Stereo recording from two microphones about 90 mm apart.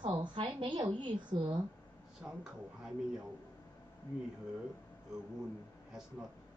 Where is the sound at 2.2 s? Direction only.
5° right (ahead or behind).